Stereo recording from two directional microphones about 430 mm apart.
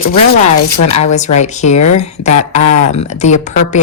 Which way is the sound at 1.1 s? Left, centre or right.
Centre.